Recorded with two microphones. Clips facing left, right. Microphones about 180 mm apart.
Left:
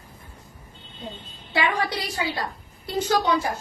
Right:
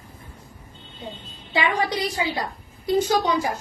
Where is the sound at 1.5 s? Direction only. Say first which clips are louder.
Right 1 dB; 15° right (ahead or behind).